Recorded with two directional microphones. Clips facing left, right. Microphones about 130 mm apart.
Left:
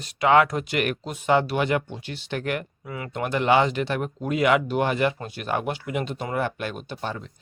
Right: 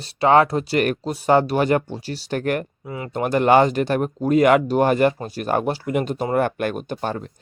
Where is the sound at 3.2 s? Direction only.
45° right (ahead or behind).